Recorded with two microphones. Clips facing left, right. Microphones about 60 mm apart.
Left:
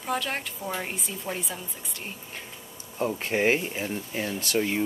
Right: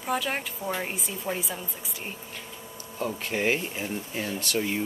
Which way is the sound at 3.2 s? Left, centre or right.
Left.